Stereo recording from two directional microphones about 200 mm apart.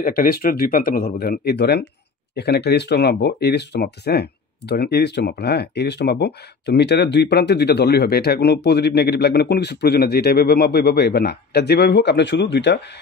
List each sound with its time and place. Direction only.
0.0 s speech: 45° left (ahead or behind)